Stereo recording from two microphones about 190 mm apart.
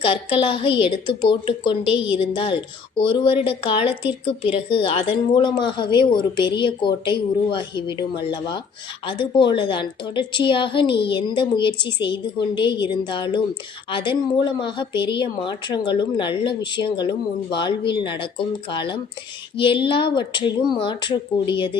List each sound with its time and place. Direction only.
0.0 s a woman's voice: 30° left (ahead or behind)